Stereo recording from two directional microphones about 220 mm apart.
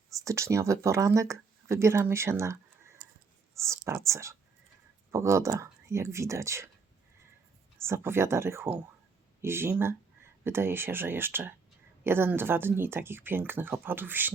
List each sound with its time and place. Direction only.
0.1 s speech: 15° right (ahead or behind)
7.8 s speech: 10° right (ahead or behind)